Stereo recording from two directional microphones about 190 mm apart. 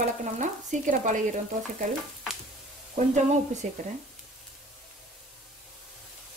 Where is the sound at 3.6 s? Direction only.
40° right (ahead or behind).